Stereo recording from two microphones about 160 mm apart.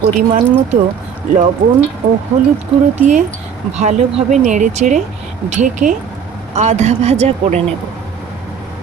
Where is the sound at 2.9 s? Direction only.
45° right (ahead or behind).